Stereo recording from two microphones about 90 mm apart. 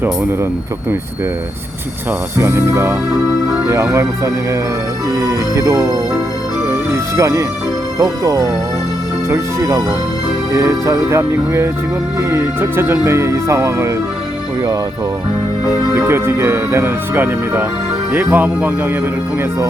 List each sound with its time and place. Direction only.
2.4 s speech: 30° right (ahead or behind)
3.1 s music: 5° right (ahead or behind)
5.1 s speech: 35° right (ahead or behind)
6.7 s music: 30° right (ahead or behind)
7.9 s speech: 35° right (ahead or behind)
16.0 s speech: 30° right (ahead or behind)